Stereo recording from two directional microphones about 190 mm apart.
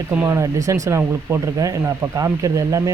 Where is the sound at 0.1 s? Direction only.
10° right (ahead or behind).